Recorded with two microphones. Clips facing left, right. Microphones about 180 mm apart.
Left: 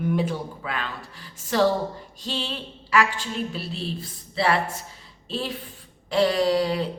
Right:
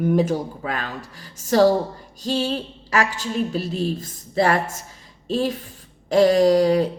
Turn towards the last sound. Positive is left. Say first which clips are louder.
# right 7 dB
turn(degrees=-45)  # may be behind; listen again after turning